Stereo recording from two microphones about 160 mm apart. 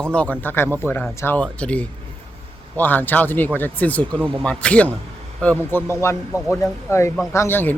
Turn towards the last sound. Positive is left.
turn(degrees=15)  # may be behind; listen again after turning